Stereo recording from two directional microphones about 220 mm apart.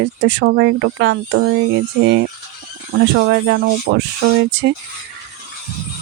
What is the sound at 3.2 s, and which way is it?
Speech, 55° right (ahead or behind).